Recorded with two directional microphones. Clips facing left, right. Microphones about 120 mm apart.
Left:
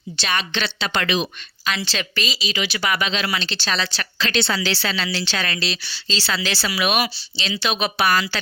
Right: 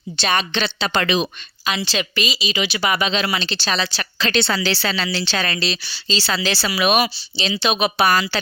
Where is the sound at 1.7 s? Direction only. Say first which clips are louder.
Right 3 dB; 15° right (ahead or behind).